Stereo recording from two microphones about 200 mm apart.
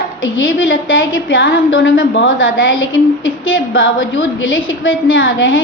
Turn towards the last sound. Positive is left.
turn(degrees=75)  # may be behind; listen again after turning